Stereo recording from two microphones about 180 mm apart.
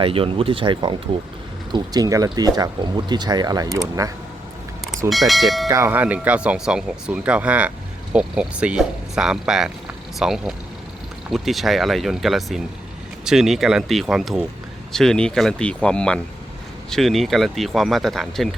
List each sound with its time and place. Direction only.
0.0 s speech: 30° right (ahead or behind)
5.0 s speech: centre (ahead or behind)
5.6 s speech: 15° right (ahead or behind); by 18.4 s centre (ahead or behind)